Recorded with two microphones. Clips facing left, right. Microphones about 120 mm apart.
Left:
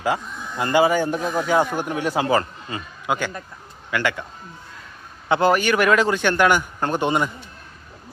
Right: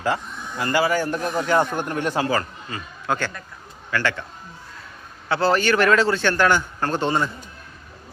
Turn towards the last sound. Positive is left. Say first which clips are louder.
# left 1 dB
turn(degrees=15)  # may be behind; listen again after turning